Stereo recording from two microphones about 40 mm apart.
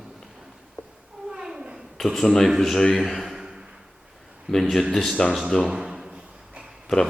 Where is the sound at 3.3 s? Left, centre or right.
Centre.